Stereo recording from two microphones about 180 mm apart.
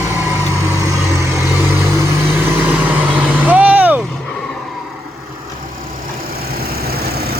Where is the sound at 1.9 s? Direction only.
15° right (ahead or behind).